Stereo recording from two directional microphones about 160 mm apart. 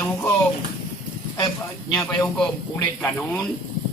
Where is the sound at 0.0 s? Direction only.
15° left (ahead or behind).